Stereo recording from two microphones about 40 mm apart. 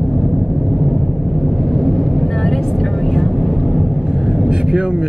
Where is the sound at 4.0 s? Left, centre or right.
Centre.